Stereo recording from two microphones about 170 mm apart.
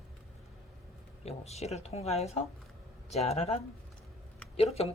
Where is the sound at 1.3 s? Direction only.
40° left (ahead or behind).